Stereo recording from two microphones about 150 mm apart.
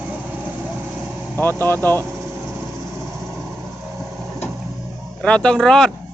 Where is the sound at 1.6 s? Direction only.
15° left (ahead or behind).